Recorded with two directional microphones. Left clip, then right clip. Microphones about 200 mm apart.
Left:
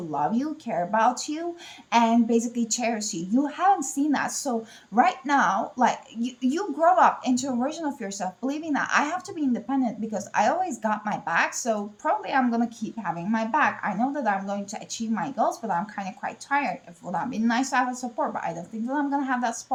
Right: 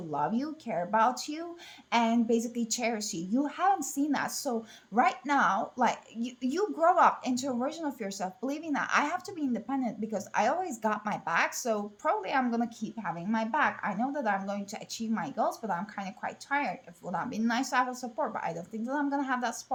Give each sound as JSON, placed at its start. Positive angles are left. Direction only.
{"t": 0.1, "sound": "a woman's voice", "side_deg": -20}